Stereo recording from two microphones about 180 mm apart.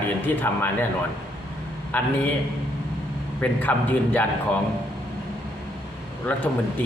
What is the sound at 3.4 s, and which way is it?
Speech, 10° left (ahead or behind).